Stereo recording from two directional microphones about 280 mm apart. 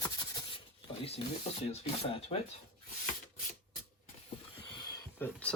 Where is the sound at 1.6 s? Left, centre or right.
Left.